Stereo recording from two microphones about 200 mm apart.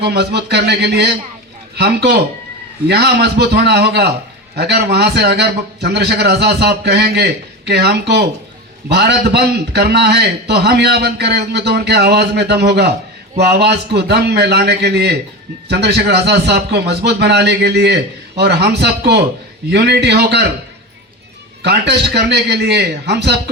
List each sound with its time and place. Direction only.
0.0 s a man's voice: 55° right (ahead or behind)
21.6 s a man's voice: 55° right (ahead or behind)